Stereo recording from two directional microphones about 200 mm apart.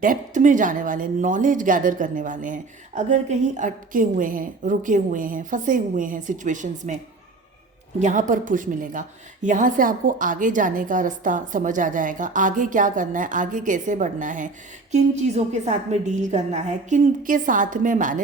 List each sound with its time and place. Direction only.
0.0 s a woman's voice: 40° right (ahead or behind)
7.9 s a woman's voice: 40° right (ahead or behind)